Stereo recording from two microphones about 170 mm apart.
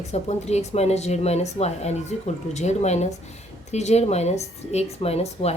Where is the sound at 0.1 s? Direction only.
40° left (ahead or behind).